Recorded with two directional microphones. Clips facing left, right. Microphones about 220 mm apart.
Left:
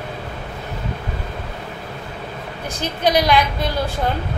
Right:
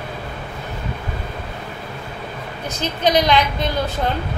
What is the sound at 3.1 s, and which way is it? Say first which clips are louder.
Speech: even; 20° right (ahead or behind).